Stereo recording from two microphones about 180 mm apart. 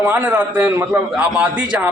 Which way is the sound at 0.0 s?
10° right (ahead or behind).